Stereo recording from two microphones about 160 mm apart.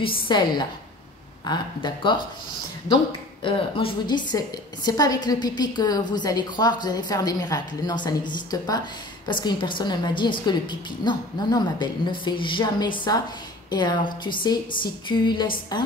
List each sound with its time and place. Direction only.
0.3 s a woman's voice: 25° left (ahead or behind)
3.4 s a woman's voice: 30° left (ahead or behind)